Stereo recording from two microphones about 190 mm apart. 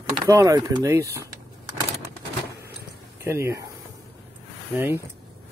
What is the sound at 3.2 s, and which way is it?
Speech, 15° right (ahead or behind).